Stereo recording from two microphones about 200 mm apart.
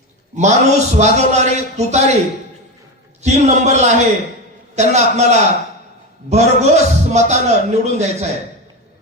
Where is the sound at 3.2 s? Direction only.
35° right (ahead or behind).